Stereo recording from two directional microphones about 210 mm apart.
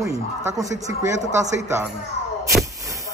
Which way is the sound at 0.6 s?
15° right (ahead or behind).